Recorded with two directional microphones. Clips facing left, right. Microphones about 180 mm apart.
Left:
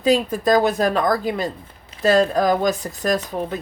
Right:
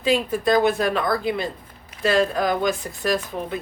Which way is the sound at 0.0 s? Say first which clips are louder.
Left 3 dB; 40° left (ahead or behind).